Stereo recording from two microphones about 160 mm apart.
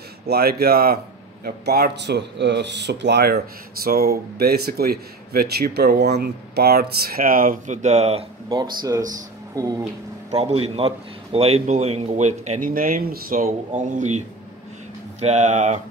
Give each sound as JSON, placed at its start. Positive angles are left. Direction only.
{"t": 0.3, "sound": "speech", "side_deg": -75}
{"t": 8.5, "sound": "speech", "side_deg": -20}
{"t": 10.3, "sound": "a man's voice", "side_deg": -40}